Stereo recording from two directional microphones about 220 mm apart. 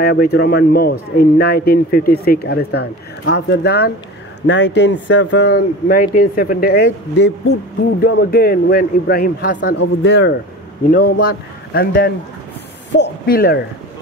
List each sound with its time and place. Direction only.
0.0 s a man's voice: 45° left (ahead or behind)
8.0 s speech: 45° left (ahead or behind)
10.0 s a man's voice: 55° left (ahead or behind)
10.9 s a man's voice: 40° left (ahead or behind)